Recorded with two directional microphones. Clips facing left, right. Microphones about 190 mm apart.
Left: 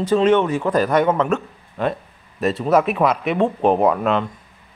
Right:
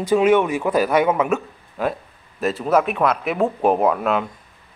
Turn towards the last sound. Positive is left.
turn(degrees=-5)  # may be behind; listen again after turning